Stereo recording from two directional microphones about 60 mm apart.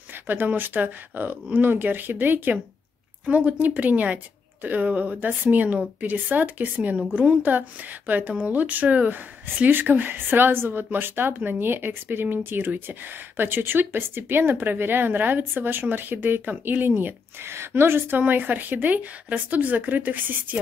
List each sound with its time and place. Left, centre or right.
0.1 s a woman's voice: right